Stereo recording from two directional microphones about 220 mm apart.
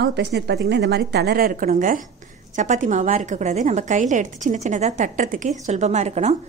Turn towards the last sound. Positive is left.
turn(degrees=-30)  # may be behind; listen again after turning